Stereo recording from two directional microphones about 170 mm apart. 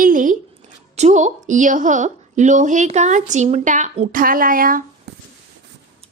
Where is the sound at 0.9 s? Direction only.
45° right (ahead or behind).